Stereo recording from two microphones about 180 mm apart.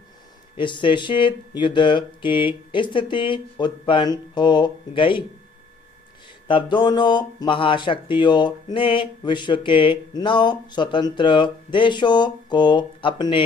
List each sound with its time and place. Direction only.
0.5 s speech: 25° left (ahead or behind)
6.5 s speech: 25° left (ahead or behind)